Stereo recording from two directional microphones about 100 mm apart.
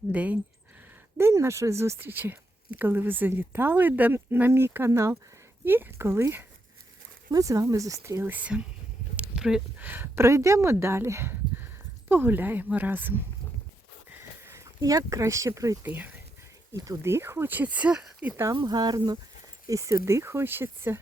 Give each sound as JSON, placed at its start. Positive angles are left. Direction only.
{"t": 0.1, "sound": "speech", "side_deg": -15}
{"t": 1.2, "sound": "speech", "side_deg": -30}
{"t": 7.3, "sound": "speech", "side_deg": -35}
{"t": 8.2, "sound": "speech", "side_deg": -15}
{"t": 9.3, "sound": "a sound", "side_deg": -5}
{"t": 9.8, "sound": "speech", "side_deg": -20}
{"t": 14.2, "sound": "sniff", "side_deg": -25}
{"t": 14.8, "sound": "speech", "side_deg": -40}
{"t": 15.9, "sound": "speech", "side_deg": -20}
{"t": 16.7, "sound": "speech", "side_deg": -35}
{"t": 18.5, "sound": "speech", "side_deg": -50}
{"t": 19.6, "sound": "speech", "side_deg": -35}